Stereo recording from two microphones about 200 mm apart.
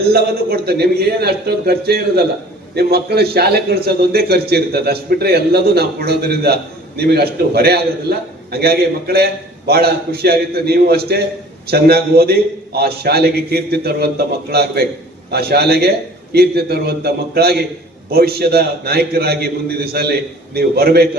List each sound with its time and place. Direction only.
0.1 s a man's voice: 50° right (ahead or behind)